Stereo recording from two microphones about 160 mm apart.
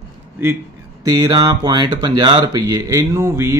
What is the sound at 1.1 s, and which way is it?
Speech, 25° right (ahead or behind).